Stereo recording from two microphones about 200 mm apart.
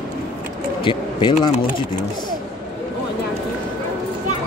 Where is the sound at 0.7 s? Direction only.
25° left (ahead or behind).